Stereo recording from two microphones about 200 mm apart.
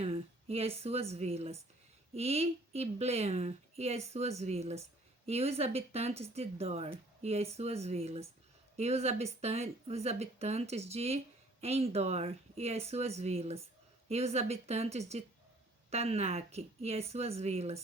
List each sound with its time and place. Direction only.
0.0 s speech: 30° right (ahead or behind)